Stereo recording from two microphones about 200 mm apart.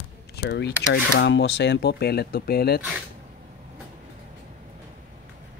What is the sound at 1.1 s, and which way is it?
Speech, 65° left (ahead or behind).